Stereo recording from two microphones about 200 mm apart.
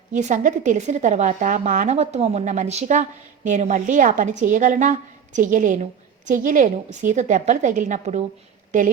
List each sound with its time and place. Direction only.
0.1 s a woman's voice: 35° right (ahead or behind)